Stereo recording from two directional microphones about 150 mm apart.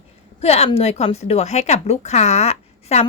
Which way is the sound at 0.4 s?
45° left (ahead or behind).